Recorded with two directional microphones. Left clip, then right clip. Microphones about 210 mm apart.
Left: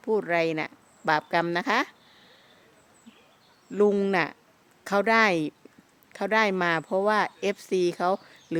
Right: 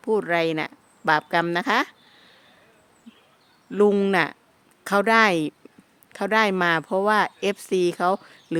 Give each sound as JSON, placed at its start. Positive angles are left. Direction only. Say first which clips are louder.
{"t": 0.0, "sound": "speech", "louder": "right 3 dB", "side_deg": -25}
{"t": 3.7, "sound": "speech", "louder": "right 3 dB", "side_deg": -25}